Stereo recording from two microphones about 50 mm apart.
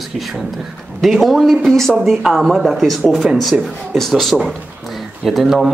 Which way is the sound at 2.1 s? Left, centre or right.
Centre.